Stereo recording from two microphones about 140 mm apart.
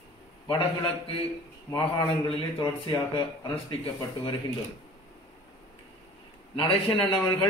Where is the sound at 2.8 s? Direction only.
35° left (ahead or behind).